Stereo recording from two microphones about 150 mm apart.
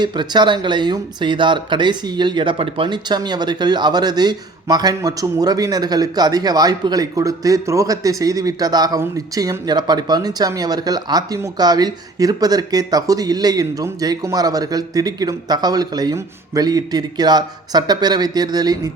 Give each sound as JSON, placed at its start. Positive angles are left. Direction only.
{"t": 0.0, "sound": "speech", "side_deg": -30}